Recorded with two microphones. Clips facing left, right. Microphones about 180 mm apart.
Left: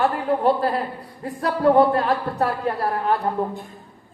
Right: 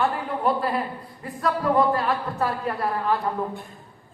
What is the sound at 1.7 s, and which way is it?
Speech, 35° left (ahead or behind).